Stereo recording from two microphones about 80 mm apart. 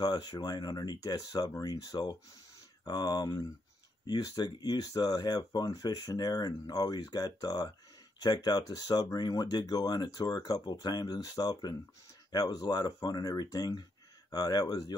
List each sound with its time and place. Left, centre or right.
0.0 s speech: left